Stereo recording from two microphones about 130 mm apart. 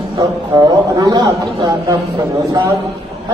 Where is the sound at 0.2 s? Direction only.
30° right (ahead or behind).